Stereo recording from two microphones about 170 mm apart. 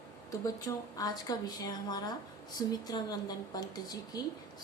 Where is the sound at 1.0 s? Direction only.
20° left (ahead or behind).